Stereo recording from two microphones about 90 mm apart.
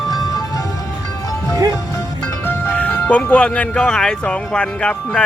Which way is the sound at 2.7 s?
15° left (ahead or behind).